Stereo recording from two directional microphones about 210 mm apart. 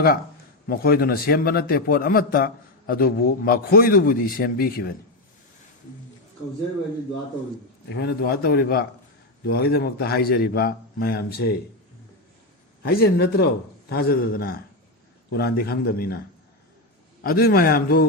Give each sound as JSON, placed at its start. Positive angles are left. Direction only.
{"t": 0.7, "sound": "a man's voice", "side_deg": 45}
{"t": 7.9, "sound": "a man's voice", "side_deg": 55}
{"t": 12.8, "sound": "a man's voice", "side_deg": 45}
{"t": 17.2, "sound": "a man's voice", "side_deg": 45}